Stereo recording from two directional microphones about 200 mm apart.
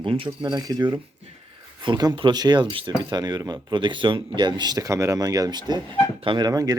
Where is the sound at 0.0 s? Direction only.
25° right (ahead or behind).